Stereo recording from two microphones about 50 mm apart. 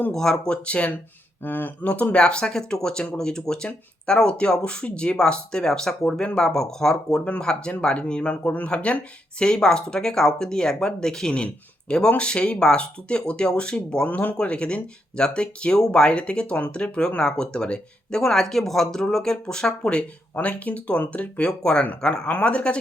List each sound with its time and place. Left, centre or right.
0.1 s speech: centre
0.4 s speech: left
1.5 s speech: left
1.9 s speech: left
2.2 s speech: centre
7.4 s speech: left
14.1 s speech: left
14.3 s speech: centre
20.3 s speech: left